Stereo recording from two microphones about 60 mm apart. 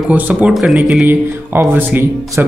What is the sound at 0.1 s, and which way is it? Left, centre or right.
Speech, right.